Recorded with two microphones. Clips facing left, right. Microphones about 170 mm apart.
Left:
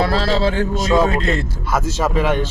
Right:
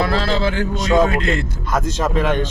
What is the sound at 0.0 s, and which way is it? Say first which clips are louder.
Speech: left 1 dB; 30° left (ahead or behind).